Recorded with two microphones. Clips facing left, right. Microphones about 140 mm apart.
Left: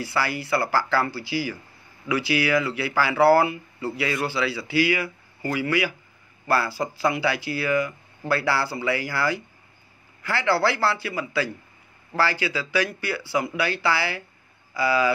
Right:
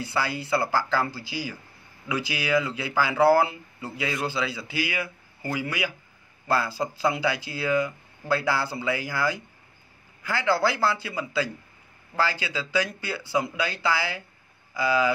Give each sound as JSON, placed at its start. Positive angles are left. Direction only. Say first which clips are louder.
{"t": 0.0, "sound": "speech", "louder": "left 2 dB", "side_deg": -20}
{"t": 10.5, "sound": "speech", "louder": "left 1 dB", "side_deg": -15}